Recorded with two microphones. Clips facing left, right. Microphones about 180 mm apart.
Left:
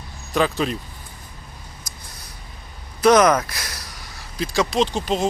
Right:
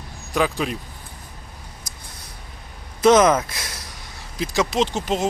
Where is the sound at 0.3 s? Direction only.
10° right (ahead or behind).